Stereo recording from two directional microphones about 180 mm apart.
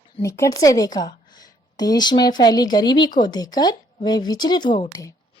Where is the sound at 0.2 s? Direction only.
15° left (ahead or behind).